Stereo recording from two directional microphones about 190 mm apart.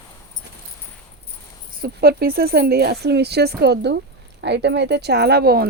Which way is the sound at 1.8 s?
55° right (ahead or behind).